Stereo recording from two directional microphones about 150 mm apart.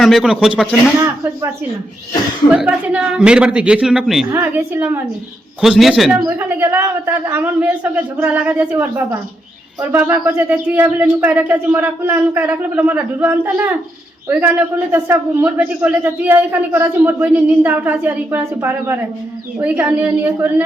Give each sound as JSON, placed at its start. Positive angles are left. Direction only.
{"t": 0.0, "sound": "a man's voice", "side_deg": 0}
{"t": 0.9, "sound": "speech", "side_deg": -20}
{"t": 2.5, "sound": "a man's voice", "side_deg": -10}
{"t": 4.3, "sound": "a man's voice", "side_deg": -15}
{"t": 5.5, "sound": "a man's voice", "side_deg": -5}
{"t": 6.1, "sound": "a man's voice", "side_deg": -15}
{"t": 9.9, "sound": "a man's voice", "side_deg": -10}